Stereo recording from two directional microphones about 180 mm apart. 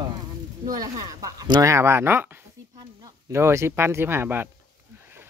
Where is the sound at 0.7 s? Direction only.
20° right (ahead or behind).